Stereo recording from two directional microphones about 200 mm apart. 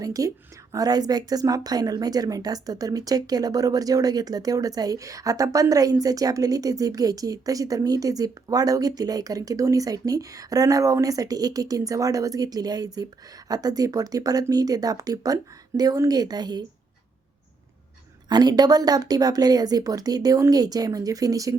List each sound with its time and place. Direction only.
0.0 s speech: 15° right (ahead or behind)
18.3 s speech: 20° right (ahead or behind)